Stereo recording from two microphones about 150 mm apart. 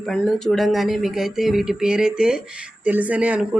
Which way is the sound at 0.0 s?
5° left (ahead or behind).